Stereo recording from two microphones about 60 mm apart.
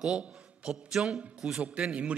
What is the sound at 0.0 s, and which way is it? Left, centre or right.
A man's voice, centre.